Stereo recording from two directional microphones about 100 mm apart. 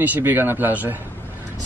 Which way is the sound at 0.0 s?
20° right (ahead or behind).